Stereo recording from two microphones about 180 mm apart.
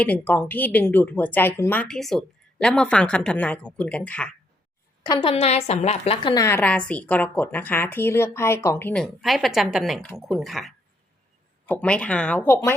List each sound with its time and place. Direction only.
0.0 s speech: 10° left (ahead or behind)
5.0 s a woman's voice: 20° left (ahead or behind)
5.3 s a woman's voice: 35° left (ahead or behind)
6.2 s speech: 20° left (ahead or behind)